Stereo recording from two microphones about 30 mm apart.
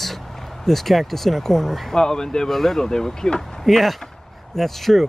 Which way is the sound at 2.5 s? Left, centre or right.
Centre.